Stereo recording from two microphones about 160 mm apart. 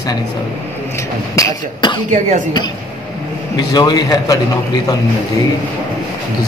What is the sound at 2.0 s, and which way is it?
Speech, 50° right (ahead or behind).